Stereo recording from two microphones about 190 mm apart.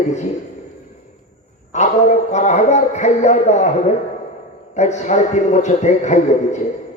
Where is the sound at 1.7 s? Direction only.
40° left (ahead or behind).